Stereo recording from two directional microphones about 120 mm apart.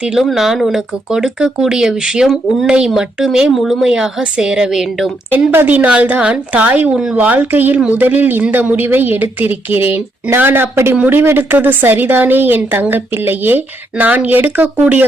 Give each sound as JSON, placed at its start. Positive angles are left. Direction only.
{"t": 0.0, "sound": "speech", "side_deg": -5}
{"t": 5.3, "sound": "a woman's voice", "side_deg": -15}